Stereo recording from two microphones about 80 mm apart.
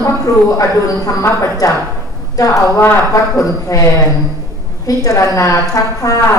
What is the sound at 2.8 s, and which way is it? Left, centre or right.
A woman's voice, left.